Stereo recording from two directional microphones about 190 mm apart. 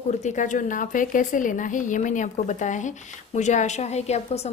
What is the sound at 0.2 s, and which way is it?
A woman's voice, 40° left (ahead or behind).